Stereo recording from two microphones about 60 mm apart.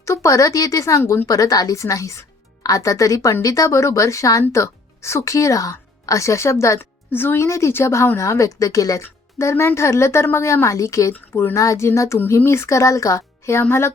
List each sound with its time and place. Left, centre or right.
0.0 s speech: left
1.3 s speech: left
7.1 s speech: left
8.2 s speech: left
9.0 s speech: left
11.9 s speech: left
13.6 s speech: left